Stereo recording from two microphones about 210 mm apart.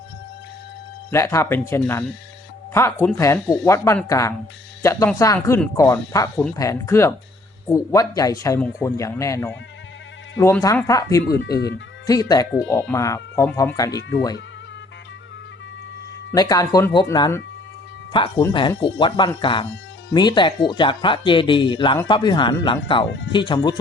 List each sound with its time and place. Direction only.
1.1 s speech: 15° left (ahead or behind)
16.3 s speech: 15° left (ahead or behind)
23.0 s speech: 60° left (ahead or behind)
23.5 s speech: 20° left (ahead or behind)